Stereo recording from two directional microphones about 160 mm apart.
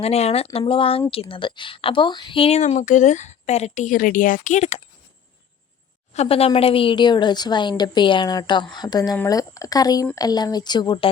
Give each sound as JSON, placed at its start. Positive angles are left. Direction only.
{"t": 0.0, "sound": "a woman's voice", "side_deg": 40}
{"t": 6.1, "sound": "a woman's voice", "side_deg": 40}